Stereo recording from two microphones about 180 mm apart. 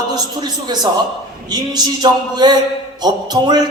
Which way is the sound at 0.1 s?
25° right (ahead or behind).